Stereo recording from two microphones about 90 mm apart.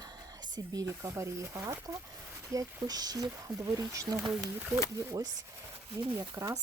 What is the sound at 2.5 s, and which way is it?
Speech, 45° right (ahead or behind).